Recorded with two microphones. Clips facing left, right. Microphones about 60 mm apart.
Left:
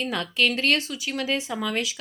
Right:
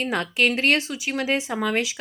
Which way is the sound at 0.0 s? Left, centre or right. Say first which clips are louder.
Right 2 dB; right.